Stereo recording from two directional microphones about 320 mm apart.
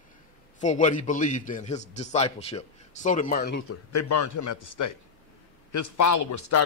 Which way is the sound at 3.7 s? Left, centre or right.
Left.